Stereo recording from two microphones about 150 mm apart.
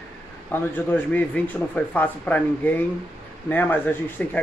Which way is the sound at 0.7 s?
10° left (ahead or behind).